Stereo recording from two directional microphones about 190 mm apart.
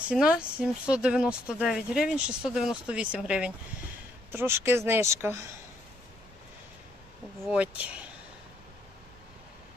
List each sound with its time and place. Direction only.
0.1 s speech: 5° right (ahead or behind)
7.4 s speech: 5° right (ahead or behind)